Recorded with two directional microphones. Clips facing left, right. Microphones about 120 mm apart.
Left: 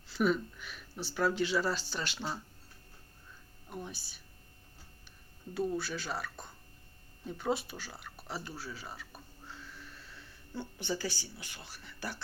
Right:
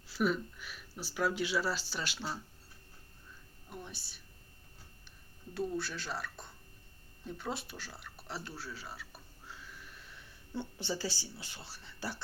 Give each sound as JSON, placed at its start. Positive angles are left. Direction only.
{"t": 0.1, "sound": "speech", "side_deg": -5}
{"t": 3.7, "sound": "speech", "side_deg": 0}
{"t": 5.5, "sound": "speech", "side_deg": 0}
{"t": 7.3, "sound": "a sound", "side_deg": 0}
{"t": 10.8, "sound": "speech", "side_deg": -25}